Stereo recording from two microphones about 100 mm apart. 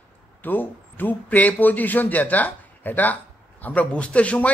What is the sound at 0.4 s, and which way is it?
A man's voice, 20° left (ahead or behind).